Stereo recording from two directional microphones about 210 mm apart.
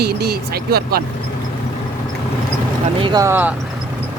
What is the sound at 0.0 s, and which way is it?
Speech, 50° right (ahead or behind).